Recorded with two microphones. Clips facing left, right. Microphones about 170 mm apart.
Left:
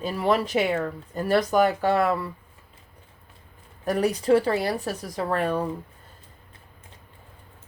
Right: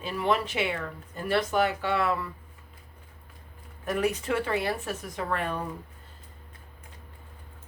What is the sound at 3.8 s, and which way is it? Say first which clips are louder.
Speech: left 6 dB; 35° left (ahead or behind).